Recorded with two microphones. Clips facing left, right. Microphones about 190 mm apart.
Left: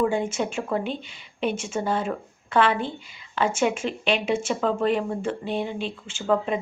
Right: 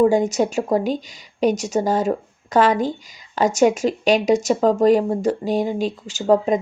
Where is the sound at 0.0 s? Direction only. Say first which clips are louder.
Right 7 dB; 40° right (ahead or behind).